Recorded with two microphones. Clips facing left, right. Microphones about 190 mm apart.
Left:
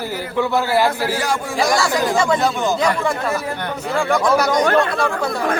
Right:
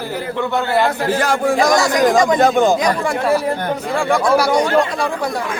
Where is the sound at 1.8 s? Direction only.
15° right (ahead or behind).